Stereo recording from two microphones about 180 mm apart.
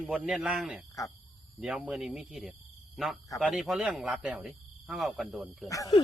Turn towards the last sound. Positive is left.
turn(degrees=20)  # may be behind; listen again after turning